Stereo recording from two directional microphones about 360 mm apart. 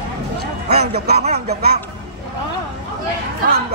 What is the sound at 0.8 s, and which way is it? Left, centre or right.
Speech, right.